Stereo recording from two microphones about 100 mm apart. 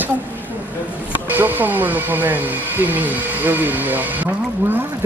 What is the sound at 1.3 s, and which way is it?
Speech, 20° right (ahead or behind).